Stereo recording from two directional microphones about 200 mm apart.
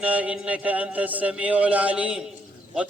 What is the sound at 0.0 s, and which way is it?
A man's voice, 5° right (ahead or behind).